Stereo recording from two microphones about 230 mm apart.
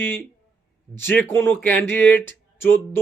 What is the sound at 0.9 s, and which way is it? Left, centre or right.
Speech, centre.